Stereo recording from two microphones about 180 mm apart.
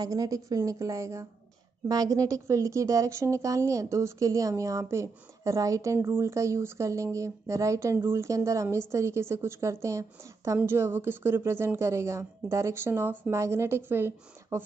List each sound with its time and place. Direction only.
0.0 s speech: 20° right (ahead or behind)